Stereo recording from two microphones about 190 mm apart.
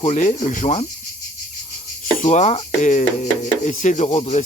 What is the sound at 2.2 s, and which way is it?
Speech, 40° left (ahead or behind).